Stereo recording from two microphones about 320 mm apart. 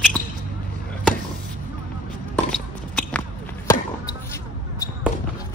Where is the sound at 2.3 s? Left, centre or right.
Centre.